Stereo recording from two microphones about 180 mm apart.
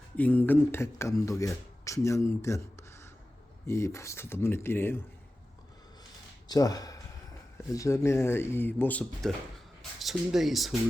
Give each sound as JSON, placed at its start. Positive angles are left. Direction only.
{"t": 0.2, "sound": "speech", "side_deg": 10}
{"t": 3.7, "sound": "speech", "side_deg": 15}
{"t": 6.5, "sound": "speech", "side_deg": 20}